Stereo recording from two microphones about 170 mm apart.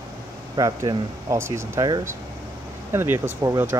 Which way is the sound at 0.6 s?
20° right (ahead or behind).